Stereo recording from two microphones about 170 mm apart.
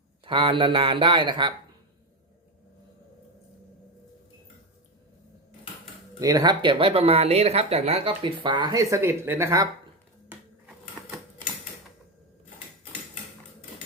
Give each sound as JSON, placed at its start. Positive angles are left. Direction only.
{"t": 0.3, "sound": "speech", "side_deg": -30}
{"t": 6.1, "sound": "speech", "side_deg": -20}